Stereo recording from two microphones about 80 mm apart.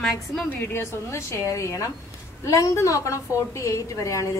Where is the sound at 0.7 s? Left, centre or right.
Left.